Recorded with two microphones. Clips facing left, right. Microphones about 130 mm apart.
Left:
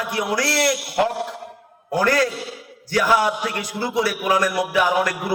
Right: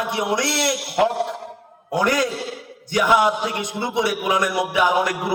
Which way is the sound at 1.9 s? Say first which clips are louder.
Left 1 dB; 20° right (ahead or behind).